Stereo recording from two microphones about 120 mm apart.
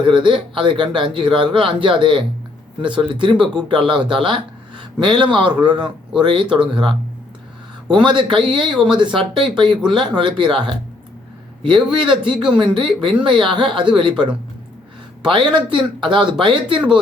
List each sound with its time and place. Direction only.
0.0 s a man's voice: 45° right (ahead or behind)